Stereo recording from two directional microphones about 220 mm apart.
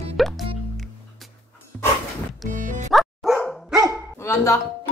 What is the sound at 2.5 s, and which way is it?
Music, 35° right (ahead or behind).